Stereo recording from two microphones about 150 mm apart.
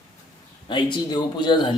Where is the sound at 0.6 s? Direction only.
30° left (ahead or behind).